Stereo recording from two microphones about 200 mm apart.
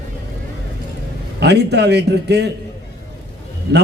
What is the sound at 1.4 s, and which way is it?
A man's voice, 55° right (ahead or behind).